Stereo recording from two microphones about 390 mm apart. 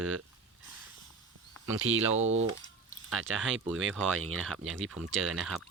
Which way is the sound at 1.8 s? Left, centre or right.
Right.